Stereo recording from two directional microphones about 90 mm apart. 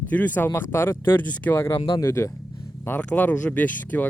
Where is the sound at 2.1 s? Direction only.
30° left (ahead or behind).